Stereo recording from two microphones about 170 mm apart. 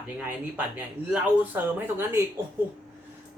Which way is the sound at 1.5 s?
15° right (ahead or behind).